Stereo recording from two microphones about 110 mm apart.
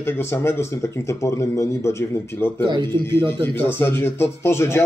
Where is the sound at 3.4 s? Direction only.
20° left (ahead or behind).